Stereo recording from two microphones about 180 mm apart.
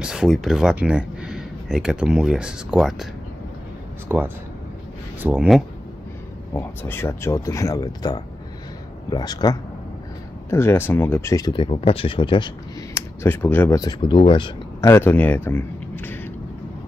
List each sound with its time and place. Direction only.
0.0 s speech: 5° right (ahead or behind)
4.1 s speech: 10° right (ahead or behind)
6.5 s speech: 10° left (ahead or behind)
13.2 s speech: 10° left (ahead or behind); by 14.5 s 30° left (ahead or behind)
14.8 s speech: 15° left (ahead or behind)